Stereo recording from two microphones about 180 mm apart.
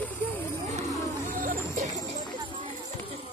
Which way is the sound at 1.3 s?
50° right (ahead or behind).